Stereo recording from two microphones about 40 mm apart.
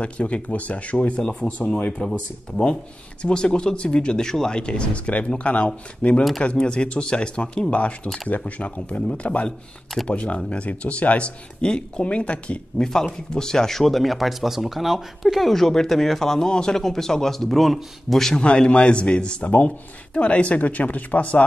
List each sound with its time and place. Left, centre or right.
0.0 s speech: left
1.1 s speech: left
7.7 s speech: left
13.3 s speech: centre
16.4 s speech: centre
18.3 s speech: left
19.4 s speech: left